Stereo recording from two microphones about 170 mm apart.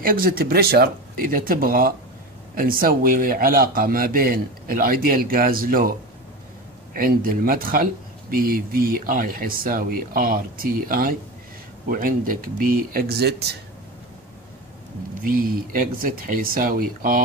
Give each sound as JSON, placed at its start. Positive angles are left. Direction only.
{"t": 0.0, "sound": "speech", "side_deg": -60}
{"t": 7.0, "sound": "speech", "side_deg": -55}
{"t": 15.2, "sound": "speech", "side_deg": -55}